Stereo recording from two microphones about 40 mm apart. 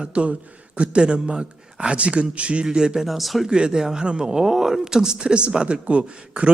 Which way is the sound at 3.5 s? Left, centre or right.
Centre.